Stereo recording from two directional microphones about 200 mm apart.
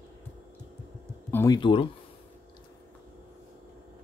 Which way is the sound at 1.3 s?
15° left (ahead or behind).